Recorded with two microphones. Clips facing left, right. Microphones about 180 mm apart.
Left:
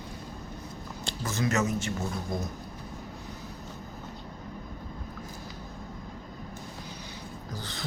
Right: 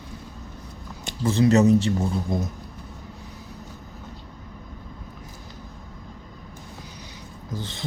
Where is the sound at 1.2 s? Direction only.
30° right (ahead or behind).